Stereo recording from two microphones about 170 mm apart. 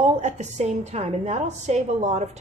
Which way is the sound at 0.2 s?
45° right (ahead or behind).